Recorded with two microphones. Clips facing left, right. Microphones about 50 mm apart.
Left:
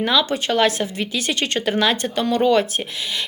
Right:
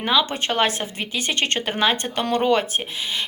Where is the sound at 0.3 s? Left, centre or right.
Right.